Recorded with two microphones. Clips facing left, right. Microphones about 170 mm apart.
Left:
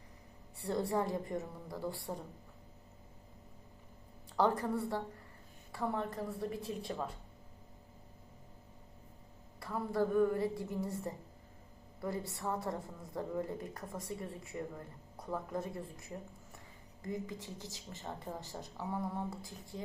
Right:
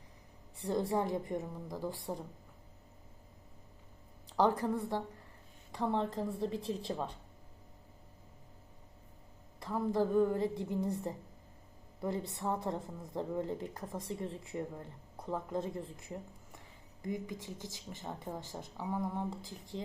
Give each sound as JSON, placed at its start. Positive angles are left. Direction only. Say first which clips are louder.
{"t": 0.9, "sound": "a woman's voice", "louder": "right 1 dB", "side_deg": -15}
{"t": 4.3, "sound": "a woman's voice", "louder": "right 2 dB", "side_deg": -15}
{"t": 5.7, "sound": "a woman's voice", "louder": "right 3 dB", "side_deg": -25}
{"t": 9.6, "sound": "a woman's voice", "louder": "right 2 dB", "side_deg": -15}
{"t": 11.9, "sound": "a woman's voice", "louder": "right 2 dB", "side_deg": -20}